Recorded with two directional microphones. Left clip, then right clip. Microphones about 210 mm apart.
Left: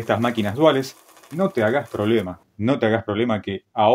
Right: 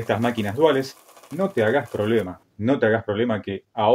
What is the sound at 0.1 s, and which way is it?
Speech, 45° left (ahead or behind).